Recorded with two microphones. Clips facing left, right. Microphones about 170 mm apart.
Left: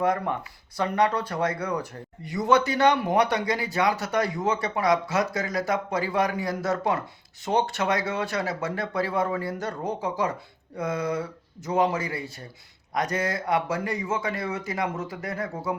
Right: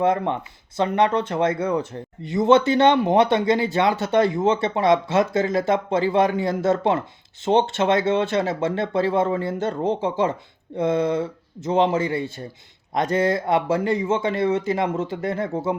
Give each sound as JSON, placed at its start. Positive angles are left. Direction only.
{"t": 0.0, "sound": "speech", "side_deg": -25}